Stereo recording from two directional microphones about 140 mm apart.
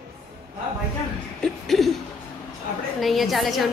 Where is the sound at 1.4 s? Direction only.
Centre (ahead or behind).